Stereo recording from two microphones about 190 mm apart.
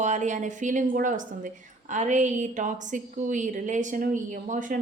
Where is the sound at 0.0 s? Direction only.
40° right (ahead or behind).